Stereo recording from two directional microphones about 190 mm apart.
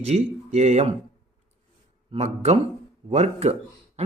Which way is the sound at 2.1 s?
35° right (ahead or behind).